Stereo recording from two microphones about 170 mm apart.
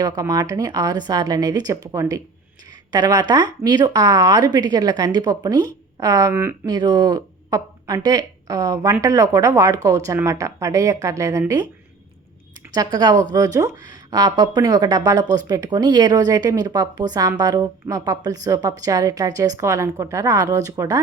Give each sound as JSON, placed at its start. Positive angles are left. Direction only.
{"t": 0.0, "sound": "a woman's voice", "side_deg": -20}
{"t": 12.7, "sound": "a woman's voice", "side_deg": -25}